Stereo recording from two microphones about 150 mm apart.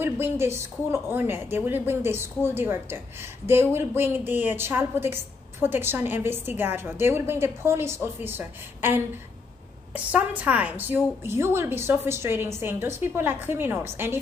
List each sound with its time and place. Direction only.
0.0 s a woman's voice: 15° right (ahead or behind)